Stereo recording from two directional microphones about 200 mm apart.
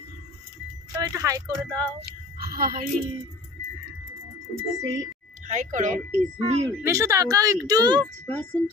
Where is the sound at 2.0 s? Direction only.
50° right (ahead or behind).